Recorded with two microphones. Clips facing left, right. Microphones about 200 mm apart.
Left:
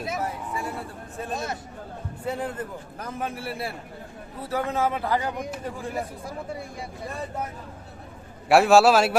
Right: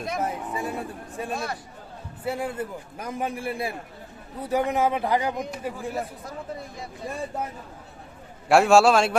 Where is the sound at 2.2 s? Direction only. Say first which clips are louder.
Right 1 dB; 10° right (ahead or behind).